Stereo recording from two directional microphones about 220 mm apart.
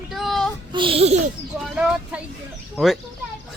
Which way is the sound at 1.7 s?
5° right (ahead or behind).